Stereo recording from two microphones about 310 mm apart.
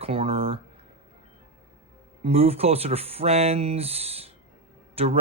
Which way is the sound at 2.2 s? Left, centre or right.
Centre.